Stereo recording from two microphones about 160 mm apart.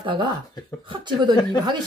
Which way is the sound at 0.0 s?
30° right (ahead or behind).